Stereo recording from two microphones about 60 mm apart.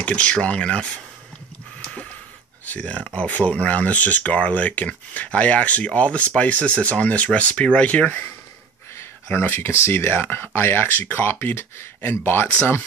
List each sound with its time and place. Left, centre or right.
0.0 s speech: left
2.6 s speech: left
8.9 s speech: left